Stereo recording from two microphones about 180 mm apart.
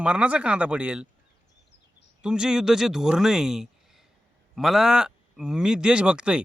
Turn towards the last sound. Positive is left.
turn(degrees=-5)  # may be behind; listen again after turning